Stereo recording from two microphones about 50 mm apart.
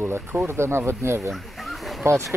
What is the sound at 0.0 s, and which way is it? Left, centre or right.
Speech, right.